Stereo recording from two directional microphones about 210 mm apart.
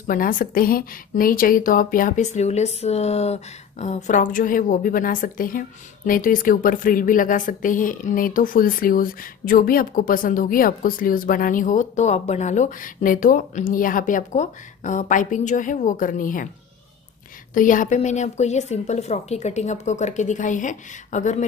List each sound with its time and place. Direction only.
0.0 s a woman's voice: 40° left (ahead or behind)
17.6 s a woman's voice: 40° left (ahead or behind)